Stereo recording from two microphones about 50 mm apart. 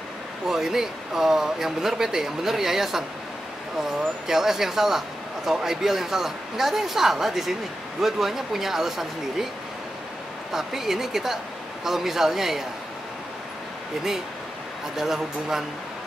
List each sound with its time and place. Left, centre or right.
0.5 s speech: centre
4.3 s speech: centre
10.5 s speech: centre
15.0 s speech: centre